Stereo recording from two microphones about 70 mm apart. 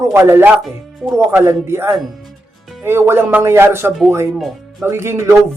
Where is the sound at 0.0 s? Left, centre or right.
Right.